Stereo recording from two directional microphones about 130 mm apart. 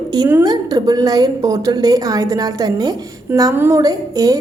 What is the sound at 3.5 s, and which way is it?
Speech, 20° right (ahead or behind).